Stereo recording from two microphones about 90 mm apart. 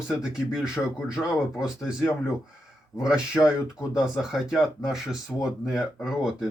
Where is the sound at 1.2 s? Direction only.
20° left (ahead or behind).